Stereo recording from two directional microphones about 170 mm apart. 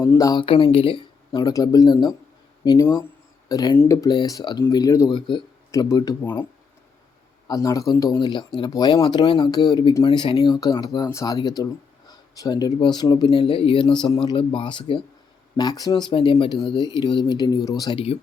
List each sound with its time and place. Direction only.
0.0 s speech: 20° left (ahead or behind)
0.4 s speech: 35° left (ahead or behind)
3.5 s speech: 25° left (ahead or behind)
7.4 s speech: 20° left (ahead or behind)